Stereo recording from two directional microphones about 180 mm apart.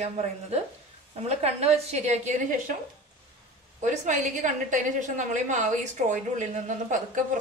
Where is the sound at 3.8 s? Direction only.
45° right (ahead or behind).